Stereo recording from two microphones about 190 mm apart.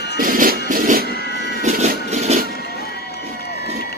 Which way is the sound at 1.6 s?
35° right (ahead or behind).